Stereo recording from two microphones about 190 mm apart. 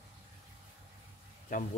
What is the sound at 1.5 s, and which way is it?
Speech, 45° left (ahead or behind).